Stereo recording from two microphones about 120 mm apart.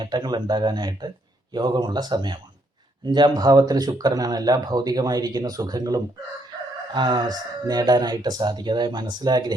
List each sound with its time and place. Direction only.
0.0 s speech: 40° right (ahead or behind)